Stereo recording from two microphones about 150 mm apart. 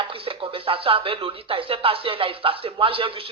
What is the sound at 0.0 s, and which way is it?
Speech, 35° right (ahead or behind).